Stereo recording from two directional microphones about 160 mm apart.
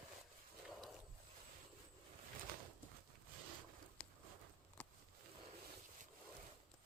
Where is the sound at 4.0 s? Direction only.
5° left (ahead or behind).